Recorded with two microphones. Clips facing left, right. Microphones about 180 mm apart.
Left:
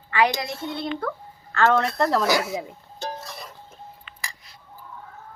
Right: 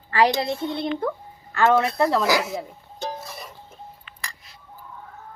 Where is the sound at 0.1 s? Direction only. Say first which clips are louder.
Right 3 dB; 35° right (ahead or behind); by 2.0 s 15° right (ahead or behind).